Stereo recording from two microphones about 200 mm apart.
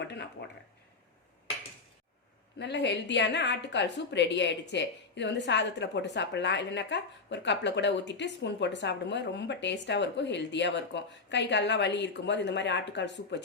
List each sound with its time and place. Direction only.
0.0 s speech: 60° left (ahead or behind)
2.6 s a woman's voice: 60° left (ahead or behind)